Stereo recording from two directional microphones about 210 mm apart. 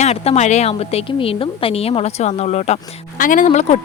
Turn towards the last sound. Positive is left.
turn(degrees=35)  # may be behind; listen again after turning